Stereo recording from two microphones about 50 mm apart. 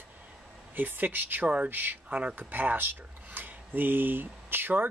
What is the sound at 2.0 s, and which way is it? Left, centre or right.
Speech, right.